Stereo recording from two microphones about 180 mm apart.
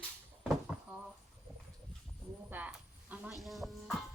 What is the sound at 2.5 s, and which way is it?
Speech, 10° right (ahead or behind).